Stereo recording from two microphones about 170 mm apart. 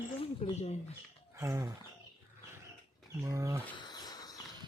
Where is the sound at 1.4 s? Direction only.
15° right (ahead or behind).